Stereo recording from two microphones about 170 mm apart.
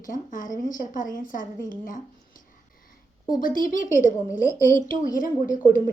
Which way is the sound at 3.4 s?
55° left (ahead or behind).